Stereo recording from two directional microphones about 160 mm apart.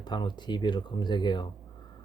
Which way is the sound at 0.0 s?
30° left (ahead or behind).